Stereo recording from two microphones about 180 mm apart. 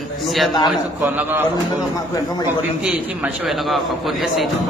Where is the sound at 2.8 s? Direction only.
5° right (ahead or behind).